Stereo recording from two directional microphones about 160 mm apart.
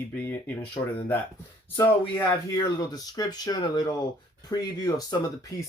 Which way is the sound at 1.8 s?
15° left (ahead or behind).